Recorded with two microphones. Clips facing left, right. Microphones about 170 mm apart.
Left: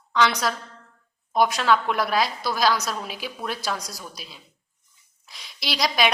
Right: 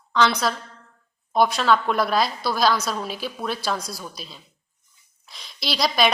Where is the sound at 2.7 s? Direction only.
30° right (ahead or behind).